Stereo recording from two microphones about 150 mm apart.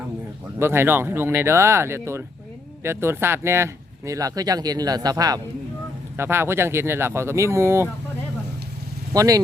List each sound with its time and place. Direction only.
0.6 s speech: 15° right (ahead or behind)
9.1 s speech: 25° right (ahead or behind)